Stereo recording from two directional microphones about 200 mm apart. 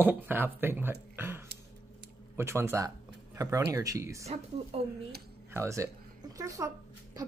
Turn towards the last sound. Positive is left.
turn(degrees=-15)  # may be behind; listen again after turning